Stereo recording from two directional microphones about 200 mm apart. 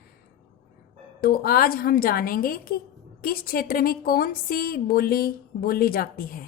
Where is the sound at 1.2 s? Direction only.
50° left (ahead or behind).